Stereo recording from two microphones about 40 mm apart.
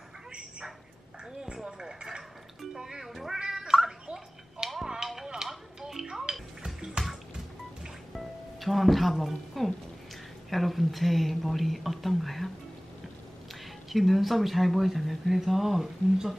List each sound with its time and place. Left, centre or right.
0.3 s a sound: right
1.4 s music: centre
3.1 s cat: centre
4.8 s music: centre
8.1 s music: centre
10.5 s speech: centre
13.8 s speech: centre